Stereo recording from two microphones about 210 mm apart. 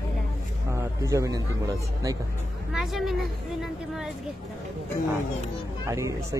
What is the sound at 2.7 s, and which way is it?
Speech, centre (ahead or behind).